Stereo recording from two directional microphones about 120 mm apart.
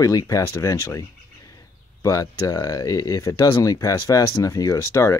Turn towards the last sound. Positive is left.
turn(degrees=25)  # may be behind; listen again after turning